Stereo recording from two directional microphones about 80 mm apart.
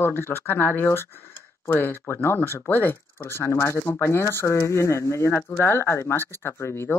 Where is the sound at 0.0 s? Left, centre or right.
Left.